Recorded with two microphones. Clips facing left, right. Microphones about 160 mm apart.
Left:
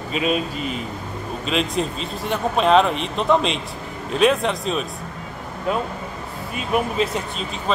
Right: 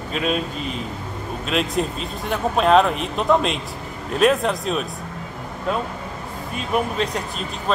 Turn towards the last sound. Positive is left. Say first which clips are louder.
# even
turn(degrees=0)  # may be behind; listen again after turning